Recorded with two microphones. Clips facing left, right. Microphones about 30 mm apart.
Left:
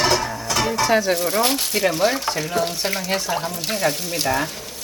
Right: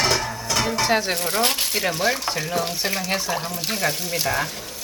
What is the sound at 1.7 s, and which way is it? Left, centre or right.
Speech, centre.